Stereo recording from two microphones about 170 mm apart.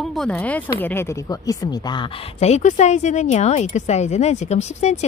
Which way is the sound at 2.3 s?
40° left (ahead or behind).